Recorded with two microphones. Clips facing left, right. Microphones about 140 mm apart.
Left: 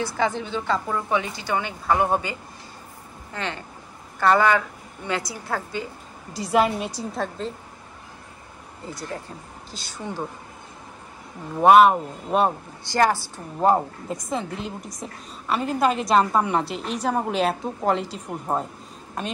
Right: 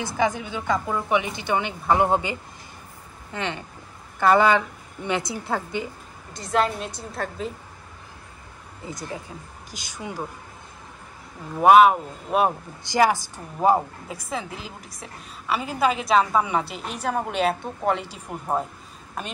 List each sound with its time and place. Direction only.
0.0 s a woman's voice: 15° right (ahead or behind)
3.3 s a woman's voice: 15° right (ahead or behind)
6.3 s a woman's voice: 5° left (ahead or behind)
8.8 s a woman's voice: 15° right (ahead or behind)
11.5 s a woman's voice: centre (ahead or behind)
12.8 s a woman's voice: 15° right (ahead or behind)